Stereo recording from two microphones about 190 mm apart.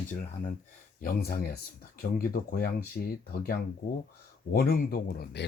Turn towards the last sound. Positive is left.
turn(degrees=55)  # may be behind; listen again after turning